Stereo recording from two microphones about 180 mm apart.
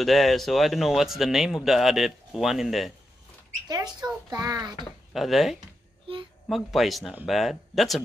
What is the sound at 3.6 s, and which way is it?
A child's voice, 20° right (ahead or behind).